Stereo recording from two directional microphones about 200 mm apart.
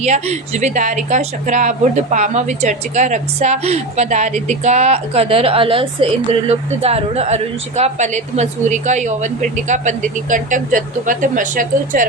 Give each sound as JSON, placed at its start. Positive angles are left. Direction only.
{"t": 0.0, "sound": "a woman's voice", "side_deg": -35}